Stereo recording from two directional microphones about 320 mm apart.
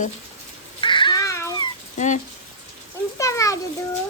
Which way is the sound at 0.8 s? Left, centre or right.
Centre.